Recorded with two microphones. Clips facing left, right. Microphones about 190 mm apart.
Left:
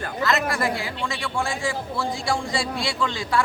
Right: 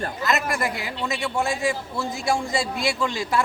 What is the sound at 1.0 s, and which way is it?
A man's voice, 20° right (ahead or behind).